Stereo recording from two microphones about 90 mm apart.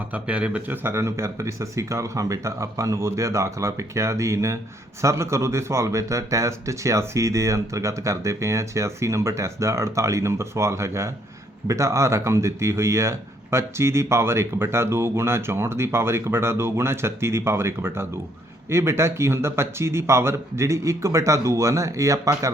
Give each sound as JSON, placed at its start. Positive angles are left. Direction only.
{"t": 0.1, "sound": "speech", "side_deg": -15}